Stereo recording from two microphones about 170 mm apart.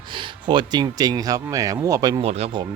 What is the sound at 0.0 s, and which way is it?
Speech, 30° right (ahead or behind).